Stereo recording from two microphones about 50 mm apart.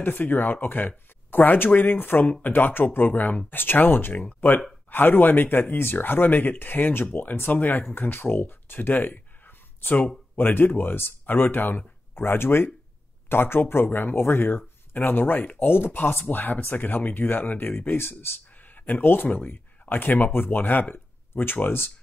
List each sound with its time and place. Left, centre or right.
0.0 s speech: left